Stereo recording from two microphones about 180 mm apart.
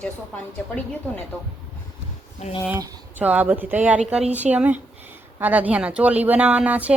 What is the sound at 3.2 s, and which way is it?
Speech, 10° right (ahead or behind).